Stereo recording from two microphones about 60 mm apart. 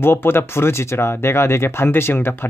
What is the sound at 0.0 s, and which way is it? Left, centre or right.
Speech, left.